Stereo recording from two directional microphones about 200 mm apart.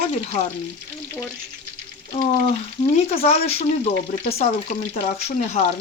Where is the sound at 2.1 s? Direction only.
35° left (ahead or behind).